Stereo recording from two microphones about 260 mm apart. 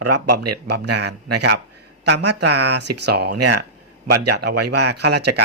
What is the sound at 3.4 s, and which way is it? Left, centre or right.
A man's voice, right.